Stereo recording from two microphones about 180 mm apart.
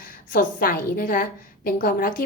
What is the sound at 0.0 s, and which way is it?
A woman's voice, 55° left (ahead or behind).